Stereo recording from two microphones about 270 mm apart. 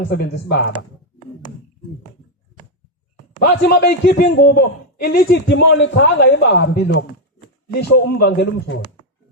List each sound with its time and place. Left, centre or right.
0.1 s speech: left
3.3 s speech: left